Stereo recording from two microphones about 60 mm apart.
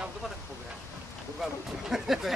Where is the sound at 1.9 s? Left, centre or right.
Centre.